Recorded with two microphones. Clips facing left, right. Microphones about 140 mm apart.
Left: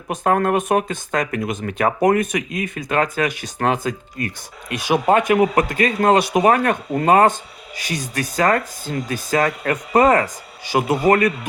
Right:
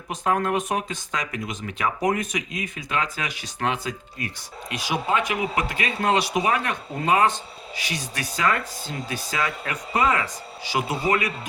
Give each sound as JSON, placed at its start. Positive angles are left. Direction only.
{"t": 0.1, "sound": "speech", "side_deg": 55}